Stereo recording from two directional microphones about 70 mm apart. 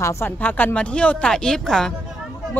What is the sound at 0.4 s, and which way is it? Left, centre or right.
Speech, left.